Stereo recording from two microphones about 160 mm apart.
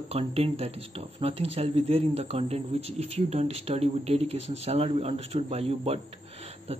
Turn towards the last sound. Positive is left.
turn(degrees=-40)  # may be behind; listen again after turning